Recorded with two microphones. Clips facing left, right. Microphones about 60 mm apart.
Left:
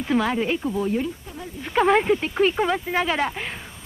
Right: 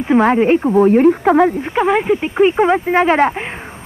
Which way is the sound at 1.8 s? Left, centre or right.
Centre.